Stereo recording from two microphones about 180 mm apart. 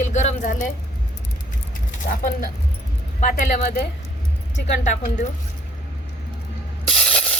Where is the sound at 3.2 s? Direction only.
45° left (ahead or behind).